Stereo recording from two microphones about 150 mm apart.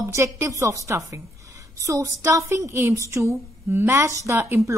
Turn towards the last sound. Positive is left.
turn(degrees=-15)  # may be behind; listen again after turning